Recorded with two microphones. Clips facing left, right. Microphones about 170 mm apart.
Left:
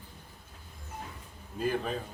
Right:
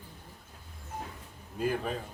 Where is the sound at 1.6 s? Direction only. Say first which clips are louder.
Even; 10° right (ahead or behind).